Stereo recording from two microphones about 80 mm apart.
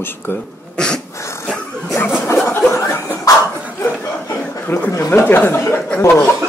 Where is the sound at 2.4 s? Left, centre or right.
Left.